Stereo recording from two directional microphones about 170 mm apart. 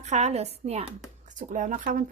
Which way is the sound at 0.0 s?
40° right (ahead or behind).